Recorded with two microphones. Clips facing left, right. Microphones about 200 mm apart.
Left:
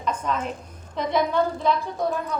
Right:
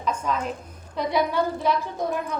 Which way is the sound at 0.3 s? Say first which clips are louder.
Even; 5° right (ahead or behind).